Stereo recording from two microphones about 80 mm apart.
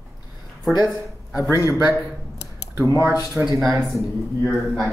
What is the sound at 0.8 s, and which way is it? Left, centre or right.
Speech, left.